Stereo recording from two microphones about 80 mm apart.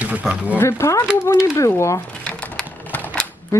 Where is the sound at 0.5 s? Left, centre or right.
Left.